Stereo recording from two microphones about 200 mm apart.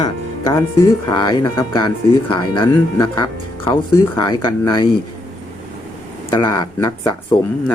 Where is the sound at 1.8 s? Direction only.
20° left (ahead or behind).